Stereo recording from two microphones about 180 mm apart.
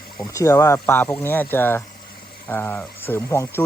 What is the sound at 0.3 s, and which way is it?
Speech, 15° left (ahead or behind).